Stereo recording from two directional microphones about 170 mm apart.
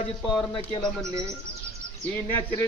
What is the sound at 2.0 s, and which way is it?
Speech, 10° left (ahead or behind).